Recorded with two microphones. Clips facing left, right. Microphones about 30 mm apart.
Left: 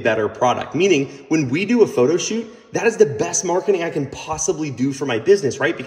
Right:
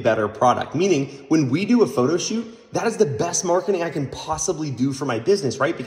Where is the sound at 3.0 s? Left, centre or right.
Right.